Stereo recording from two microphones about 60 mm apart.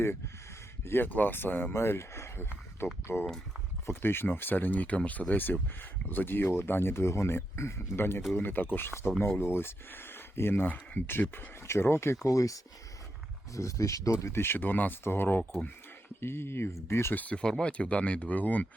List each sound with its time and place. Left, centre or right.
0.9 s speech: left
12.3 s speech: left
13.5 s speech: left
14.3 s speech: left
17.2 s speech: left